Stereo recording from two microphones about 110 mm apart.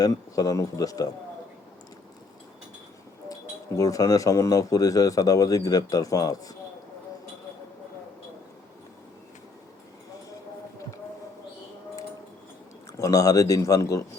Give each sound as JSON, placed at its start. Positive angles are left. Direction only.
{"t": 0.0, "sound": "speech", "side_deg": 35}
{"t": 3.8, "sound": "speech", "side_deg": 30}
{"t": 13.0, "sound": "speech", "side_deg": 30}